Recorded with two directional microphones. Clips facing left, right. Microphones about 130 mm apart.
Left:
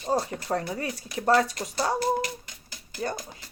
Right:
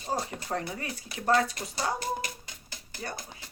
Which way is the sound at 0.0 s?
35° left (ahead or behind).